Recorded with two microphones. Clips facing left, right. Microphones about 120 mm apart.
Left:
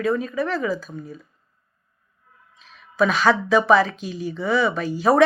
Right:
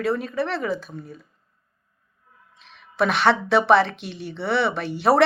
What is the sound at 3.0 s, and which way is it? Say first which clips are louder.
A woman's voice: left 1 dB; 65° right (ahead or behind).